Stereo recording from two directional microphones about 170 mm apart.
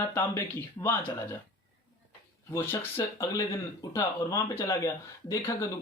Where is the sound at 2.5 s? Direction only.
15° left (ahead or behind).